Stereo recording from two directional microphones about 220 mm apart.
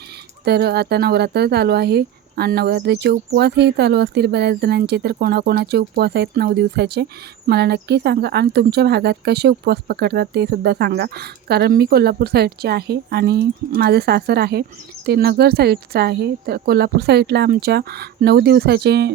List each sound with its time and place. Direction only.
0.4 s speech: 45° right (ahead or behind)